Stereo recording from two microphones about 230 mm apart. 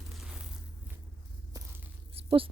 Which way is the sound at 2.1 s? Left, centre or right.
Right.